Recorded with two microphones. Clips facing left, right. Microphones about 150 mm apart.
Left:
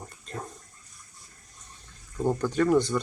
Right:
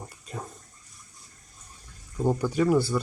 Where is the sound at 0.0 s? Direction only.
10° right (ahead or behind).